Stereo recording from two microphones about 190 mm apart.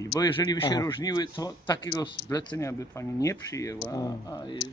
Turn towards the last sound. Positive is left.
turn(degrees=20)  # may be behind; listen again after turning